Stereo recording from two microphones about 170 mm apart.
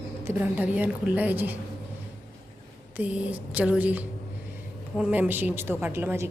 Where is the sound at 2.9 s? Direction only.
10° right (ahead or behind).